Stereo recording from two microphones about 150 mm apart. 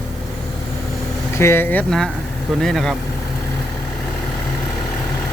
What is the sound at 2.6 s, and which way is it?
Speech, 5° left (ahead or behind).